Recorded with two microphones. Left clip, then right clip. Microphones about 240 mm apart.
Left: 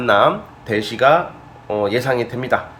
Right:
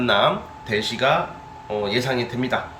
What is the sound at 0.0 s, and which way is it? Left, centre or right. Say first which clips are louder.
Speech: left 4 dB; left.